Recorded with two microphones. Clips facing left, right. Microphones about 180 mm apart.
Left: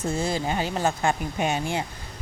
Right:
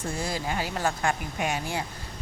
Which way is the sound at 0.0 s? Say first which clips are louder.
Left 5 dB; 25° left (ahead or behind).